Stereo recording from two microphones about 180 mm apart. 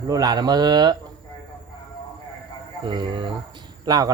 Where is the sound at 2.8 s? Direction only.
25° right (ahead or behind).